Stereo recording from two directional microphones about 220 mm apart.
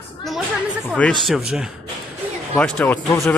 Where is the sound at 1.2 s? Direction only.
Centre (ahead or behind).